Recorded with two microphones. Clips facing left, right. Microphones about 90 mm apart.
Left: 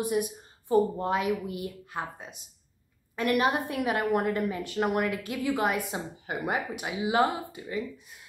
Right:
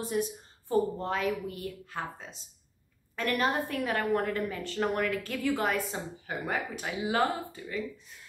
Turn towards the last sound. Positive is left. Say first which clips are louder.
# left 2 dB
turn(degrees=15)  # may be behind; listen again after turning